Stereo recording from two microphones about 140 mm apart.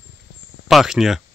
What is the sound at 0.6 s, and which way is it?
Speech, centre (ahead or behind).